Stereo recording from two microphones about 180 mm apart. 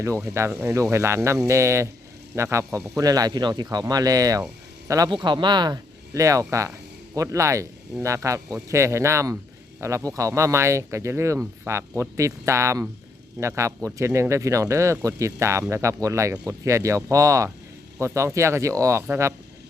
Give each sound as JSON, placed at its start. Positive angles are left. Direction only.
{"t": 0.3, "sound": "speech", "side_deg": -15}